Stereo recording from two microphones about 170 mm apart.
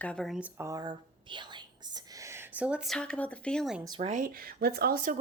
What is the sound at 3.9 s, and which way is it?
Speech, 40° right (ahead or behind).